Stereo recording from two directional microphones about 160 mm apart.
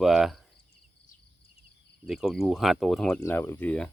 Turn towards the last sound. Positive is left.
turn(degrees=10)  # may be behind; listen again after turning